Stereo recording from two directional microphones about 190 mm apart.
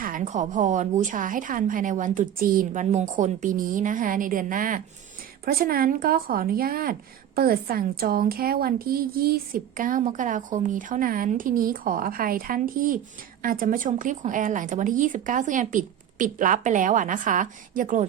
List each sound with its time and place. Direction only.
0.0 s a woman's voice: 45° right (ahead or behind)